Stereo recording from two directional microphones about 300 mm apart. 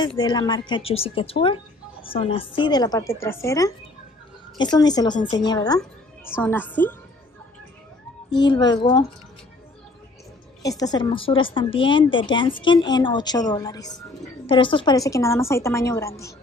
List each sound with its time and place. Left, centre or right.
0.0 s a woman's voice: centre
8.3 s a woman's voice: centre
10.6 s a woman's voice: centre